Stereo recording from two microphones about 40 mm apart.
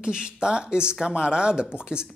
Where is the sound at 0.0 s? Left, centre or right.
Right.